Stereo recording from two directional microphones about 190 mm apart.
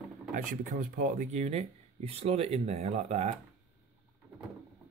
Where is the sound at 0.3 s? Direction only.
45° right (ahead or behind).